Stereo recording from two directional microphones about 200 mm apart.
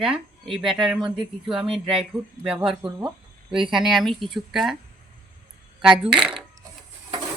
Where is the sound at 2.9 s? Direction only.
5° right (ahead or behind).